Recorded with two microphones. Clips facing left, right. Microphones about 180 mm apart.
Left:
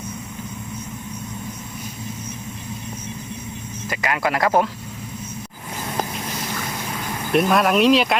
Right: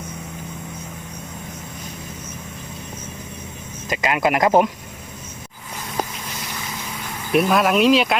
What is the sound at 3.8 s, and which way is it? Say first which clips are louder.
Speech: right 3 dB; 20° right (ahead or behind).